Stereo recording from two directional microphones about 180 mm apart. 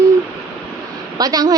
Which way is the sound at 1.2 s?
20° right (ahead or behind).